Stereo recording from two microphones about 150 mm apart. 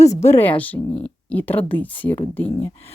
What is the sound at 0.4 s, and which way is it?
Speech, 10° left (ahead or behind).